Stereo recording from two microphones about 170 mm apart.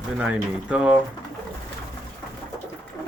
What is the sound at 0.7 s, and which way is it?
Speech, 5° right (ahead or behind).